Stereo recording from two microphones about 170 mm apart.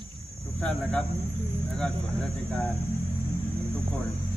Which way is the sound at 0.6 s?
10° left (ahead or behind).